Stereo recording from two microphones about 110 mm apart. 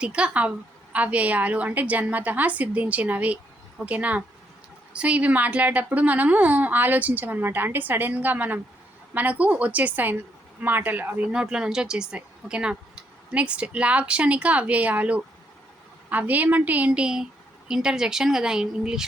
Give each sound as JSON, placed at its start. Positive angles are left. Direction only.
{"t": 0.0, "sound": "speech", "side_deg": -10}